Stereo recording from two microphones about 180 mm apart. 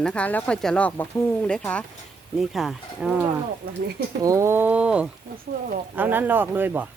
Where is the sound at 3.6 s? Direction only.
55° right (ahead or behind).